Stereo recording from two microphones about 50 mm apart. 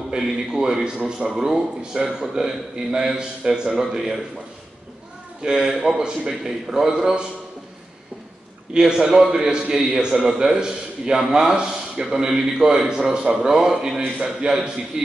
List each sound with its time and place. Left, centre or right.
0.5 s a man's voice: centre
5.4 s a man's voice: centre
8.7 s a man's voice: centre
14.0 s a man's voice: right